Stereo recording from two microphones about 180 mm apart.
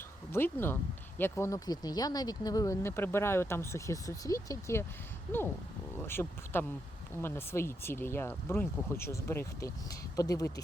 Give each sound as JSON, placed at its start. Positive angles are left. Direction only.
{"t": 0.3, "sound": "speech", "side_deg": 10}
{"t": 6.1, "sound": "speech", "side_deg": 10}